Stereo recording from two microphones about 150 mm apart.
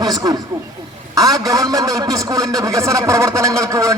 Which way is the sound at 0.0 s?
25° right (ahead or behind).